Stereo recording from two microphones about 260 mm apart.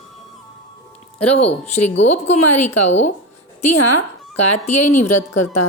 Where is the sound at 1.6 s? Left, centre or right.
Left.